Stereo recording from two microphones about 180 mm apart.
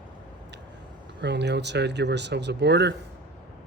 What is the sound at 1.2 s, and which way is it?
Speech, 75° right (ahead or behind).